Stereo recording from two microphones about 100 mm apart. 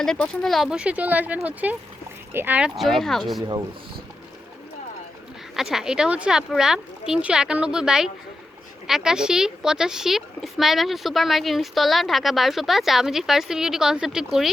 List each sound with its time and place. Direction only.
0.0 s speech: 5° left (ahead or behind)
0.7 s speech: 10° right (ahead or behind)
2.6 s speech: 5° right (ahead or behind)
5.5 s speech: 5° right (ahead or behind)